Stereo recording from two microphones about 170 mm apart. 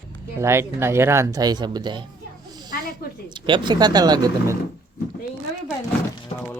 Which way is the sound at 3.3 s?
25° right (ahead or behind).